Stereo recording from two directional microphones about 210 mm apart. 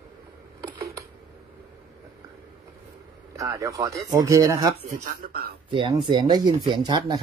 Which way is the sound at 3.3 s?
15° right (ahead or behind).